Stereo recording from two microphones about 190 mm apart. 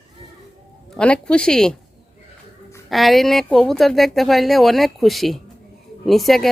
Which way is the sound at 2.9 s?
Centre (ahead or behind).